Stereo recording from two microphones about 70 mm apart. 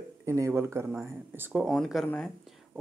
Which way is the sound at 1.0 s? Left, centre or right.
Right.